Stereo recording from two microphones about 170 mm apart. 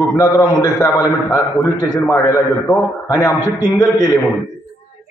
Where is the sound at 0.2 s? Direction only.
25° left (ahead or behind).